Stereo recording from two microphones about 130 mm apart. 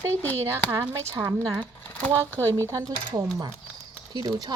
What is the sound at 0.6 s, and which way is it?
Speech, 20° right (ahead or behind).